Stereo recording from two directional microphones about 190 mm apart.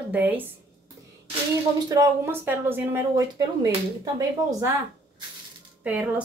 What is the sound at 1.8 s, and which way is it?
A woman's voice, 15° right (ahead or behind).